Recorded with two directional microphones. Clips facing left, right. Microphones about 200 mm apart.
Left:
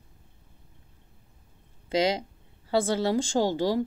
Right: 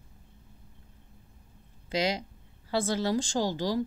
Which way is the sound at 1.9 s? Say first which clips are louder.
Left 4 dB; 30° left (ahead or behind).